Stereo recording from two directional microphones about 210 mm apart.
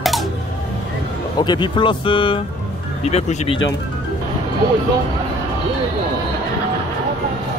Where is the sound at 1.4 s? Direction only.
20° left (ahead or behind).